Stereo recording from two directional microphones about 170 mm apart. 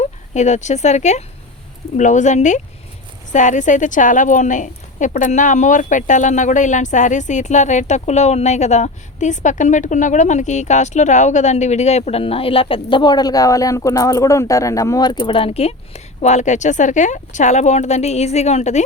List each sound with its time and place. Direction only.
0.0 s a woman's voice: 45° left (ahead or behind)